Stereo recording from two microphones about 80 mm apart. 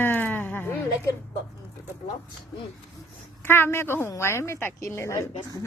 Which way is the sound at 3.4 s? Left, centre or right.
Left.